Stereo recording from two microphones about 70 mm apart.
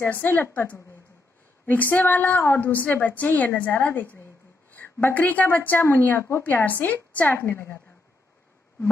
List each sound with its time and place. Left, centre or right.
0.0 s a woman's voice: left
7.3 s a woman's voice: left